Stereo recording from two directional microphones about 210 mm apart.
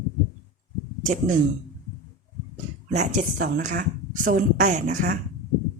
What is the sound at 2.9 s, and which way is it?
A woman's voice, 35° right (ahead or behind).